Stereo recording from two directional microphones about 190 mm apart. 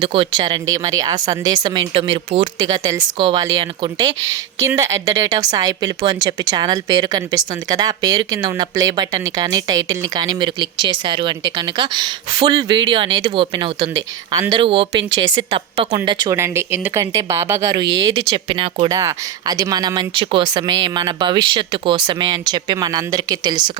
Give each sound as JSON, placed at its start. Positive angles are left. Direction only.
{"t": 0.0, "sound": "a woman's voice", "side_deg": -25}
{"t": 16.0, "sound": "speech", "side_deg": -15}
{"t": 17.8, "sound": "speech", "side_deg": -75}
{"t": 18.2, "sound": "a woman's voice", "side_deg": -30}